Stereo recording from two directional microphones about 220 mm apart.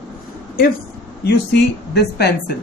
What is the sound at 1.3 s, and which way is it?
Speech, 50° left (ahead or behind).